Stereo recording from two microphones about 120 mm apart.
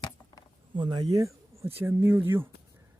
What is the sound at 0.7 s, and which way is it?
Speech, 40° right (ahead or behind).